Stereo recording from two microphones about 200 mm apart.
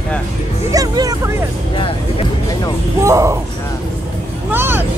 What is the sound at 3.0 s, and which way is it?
Speech, 15° right (ahead or behind).